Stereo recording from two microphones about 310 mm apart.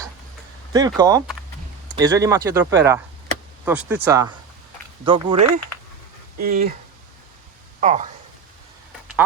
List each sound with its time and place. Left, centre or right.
0.7 s speech: centre
7.8 s speech: right